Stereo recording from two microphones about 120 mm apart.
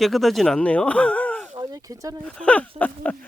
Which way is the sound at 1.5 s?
35° right (ahead or behind).